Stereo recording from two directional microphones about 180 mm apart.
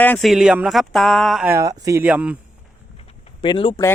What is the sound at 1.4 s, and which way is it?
Speech, 15° right (ahead or behind).